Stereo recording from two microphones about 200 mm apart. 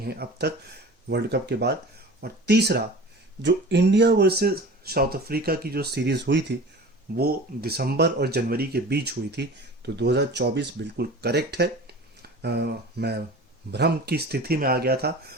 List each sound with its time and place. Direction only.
0.0 s speech: 50° right (ahead or behind)